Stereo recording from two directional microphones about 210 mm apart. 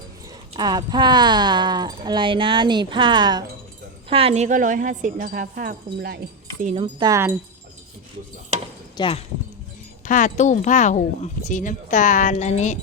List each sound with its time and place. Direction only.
0.5 s a woman's voice: 20° right (ahead or behind); by 6.1 s 45° right (ahead or behind)
6.6 s a woman's voice: 35° right (ahead or behind)
6.8 s wind chime: 15° right (ahead or behind)
9.0 s speech: 25° left (ahead or behind)
10.1 s speech: 35° left (ahead or behind)